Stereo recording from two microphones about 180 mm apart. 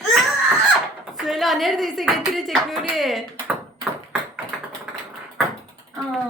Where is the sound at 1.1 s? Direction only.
Centre (ahead or behind).